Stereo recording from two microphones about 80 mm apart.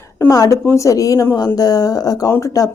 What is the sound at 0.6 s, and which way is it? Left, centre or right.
A woman's voice, left.